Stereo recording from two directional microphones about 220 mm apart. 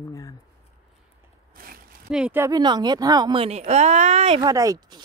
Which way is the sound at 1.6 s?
40° right (ahead or behind).